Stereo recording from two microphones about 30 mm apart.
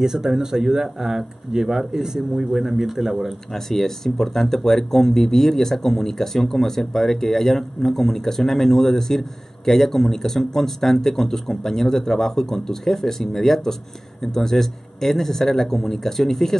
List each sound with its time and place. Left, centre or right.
0.0 s speech: centre
3.5 s speech: centre